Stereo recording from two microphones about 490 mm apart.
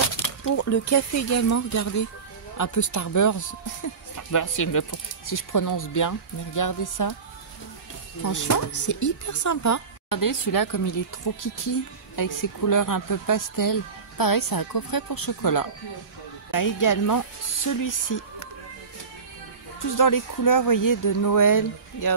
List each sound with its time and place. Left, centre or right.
0.6 s speech: left
8.2 s speech: left
20.0 s speech: left